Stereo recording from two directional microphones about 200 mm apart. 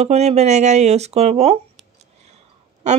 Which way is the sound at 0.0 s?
30° right (ahead or behind).